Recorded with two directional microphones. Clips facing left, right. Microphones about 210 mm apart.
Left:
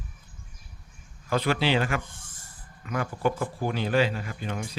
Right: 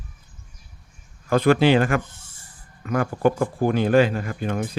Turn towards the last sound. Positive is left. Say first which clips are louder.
# right 7 dB
turn(degrees=-50)  # may be behind; listen again after turning